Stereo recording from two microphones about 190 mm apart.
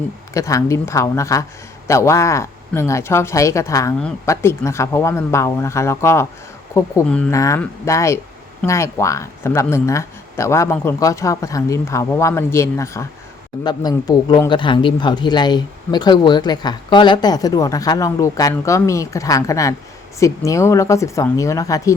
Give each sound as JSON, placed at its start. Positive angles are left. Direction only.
{"t": 0.3, "sound": "speech", "side_deg": 15}